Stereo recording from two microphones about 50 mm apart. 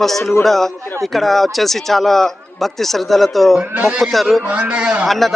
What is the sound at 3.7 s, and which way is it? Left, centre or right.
Speech, right.